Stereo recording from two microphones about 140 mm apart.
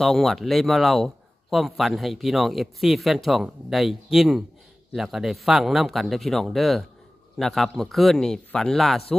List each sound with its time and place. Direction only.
0.0 s a man's voice: centre (ahead or behind)